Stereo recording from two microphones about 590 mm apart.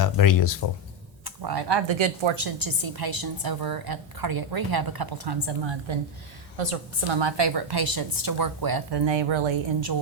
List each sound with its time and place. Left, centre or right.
0.0 s speech: left
1.2 s a woman's voice: right
6.6 s a woman's voice: right